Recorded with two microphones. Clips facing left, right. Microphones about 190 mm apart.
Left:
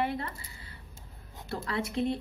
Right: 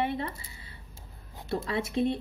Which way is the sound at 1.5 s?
25° right (ahead or behind).